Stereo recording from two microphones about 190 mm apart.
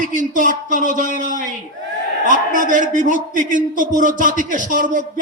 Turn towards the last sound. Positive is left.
turn(degrees=-45)  # may be behind; listen again after turning